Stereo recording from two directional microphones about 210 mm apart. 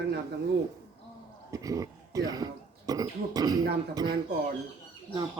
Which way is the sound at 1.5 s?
15° right (ahead or behind).